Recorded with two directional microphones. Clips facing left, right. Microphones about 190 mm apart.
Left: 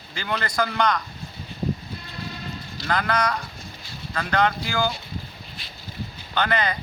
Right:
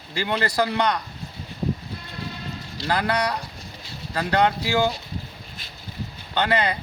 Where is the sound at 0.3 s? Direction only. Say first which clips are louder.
Right 2 dB; 30° right (ahead or behind).